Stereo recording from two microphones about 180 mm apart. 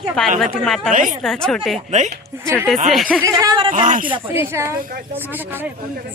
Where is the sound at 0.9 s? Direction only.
45° right (ahead or behind).